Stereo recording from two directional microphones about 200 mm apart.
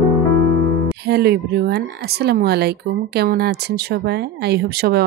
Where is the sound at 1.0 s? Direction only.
55° right (ahead or behind).